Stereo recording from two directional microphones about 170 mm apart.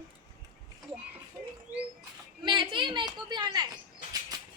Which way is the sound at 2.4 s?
30° right (ahead or behind).